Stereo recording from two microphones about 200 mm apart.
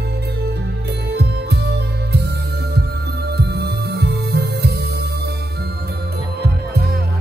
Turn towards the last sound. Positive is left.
turn(degrees=-55)  # may be behind; listen again after turning